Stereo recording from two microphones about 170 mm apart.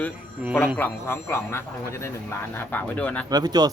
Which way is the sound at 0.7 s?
10° left (ahead or behind).